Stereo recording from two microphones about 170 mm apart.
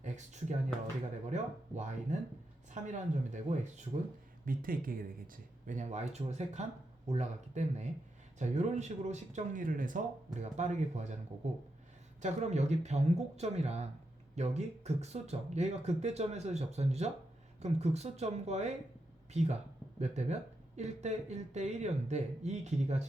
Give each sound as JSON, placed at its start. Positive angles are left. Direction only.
{"t": 0.0, "sound": "a sound", "side_deg": -45}
{"t": 1.3, "sound": "speech", "side_deg": -45}
{"t": 4.4, "sound": "speech", "side_deg": -55}